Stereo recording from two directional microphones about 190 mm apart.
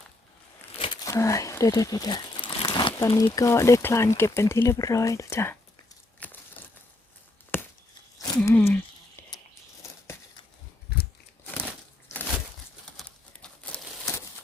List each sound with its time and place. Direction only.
0.8 s crumpling: 20° left (ahead or behind)
3.1 s speech: 20° left (ahead or behind)
6.1 s crumpling: 10° left (ahead or behind)
7.5 s a sound: 10° left (ahead or behind)
8.4 s speech: 10° left (ahead or behind)
10.9 s scissors: 55° left (ahead or behind)
13.0 s crumpling: 5° left (ahead or behind)